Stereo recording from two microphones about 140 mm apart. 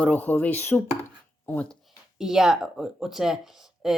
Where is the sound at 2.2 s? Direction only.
5° right (ahead or behind).